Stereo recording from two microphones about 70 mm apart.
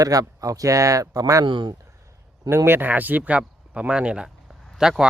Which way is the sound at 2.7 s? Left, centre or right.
Right.